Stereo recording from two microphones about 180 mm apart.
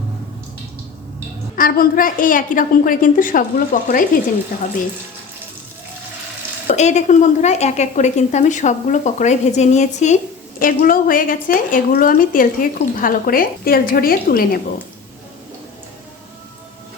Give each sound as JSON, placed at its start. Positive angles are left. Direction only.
{"t": 1.5, "sound": "a woman's voice", "side_deg": 50}
{"t": 6.7, "sound": "a woman's voice", "side_deg": 40}
{"t": 10.6, "sound": "a woman's voice", "side_deg": 50}